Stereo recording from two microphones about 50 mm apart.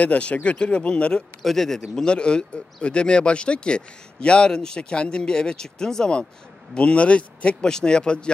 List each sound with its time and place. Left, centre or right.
0.0 s speech: left
1.4 s speech: centre
2.0 s speech: centre